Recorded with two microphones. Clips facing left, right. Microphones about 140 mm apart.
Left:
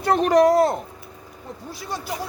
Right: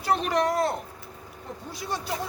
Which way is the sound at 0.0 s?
45° left (ahead or behind).